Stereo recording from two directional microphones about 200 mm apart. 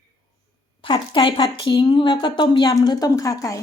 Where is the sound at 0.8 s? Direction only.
25° left (ahead or behind).